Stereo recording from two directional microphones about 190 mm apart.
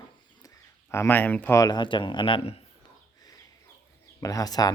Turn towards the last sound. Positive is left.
turn(degrees=20)  # may be behind; listen again after turning